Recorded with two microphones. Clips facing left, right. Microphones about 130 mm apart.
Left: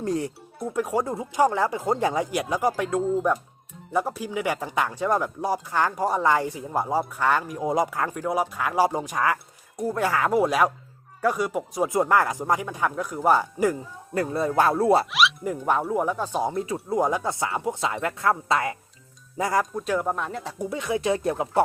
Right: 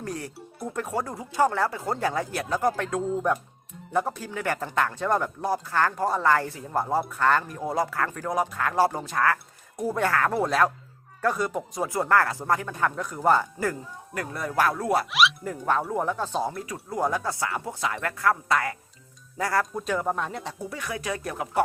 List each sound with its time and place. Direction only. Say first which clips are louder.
0.0 s speech: left 7 dB; 25° left (ahead or behind)
0.7 s speech: left 5 dB; 10° left (ahead or behind)
9.7 s speech: left 1 dB; centre (ahead or behind)
10.1 s speech: left 5 dB; 10° left (ahead or behind)
14.1 s speech: left 8 dB; 30° left (ahead or behind)
15.8 s speech: left 2 dB; 5° left (ahead or behind)
19.7 s speech: left 1 dB; centre (ahead or behind)
20.6 s speech: left 7 dB; 20° left (ahead or behind)